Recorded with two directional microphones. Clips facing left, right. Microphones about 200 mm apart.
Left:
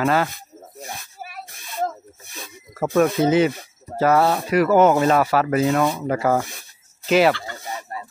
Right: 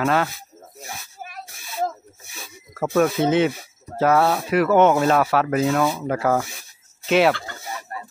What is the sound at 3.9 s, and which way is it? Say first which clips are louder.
Speech: left 1 dB; centre (ahead or behind).